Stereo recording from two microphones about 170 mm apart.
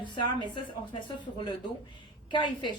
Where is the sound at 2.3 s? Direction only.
25° left (ahead or behind).